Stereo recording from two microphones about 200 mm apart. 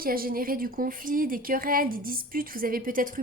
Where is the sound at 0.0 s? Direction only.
45° right (ahead or behind).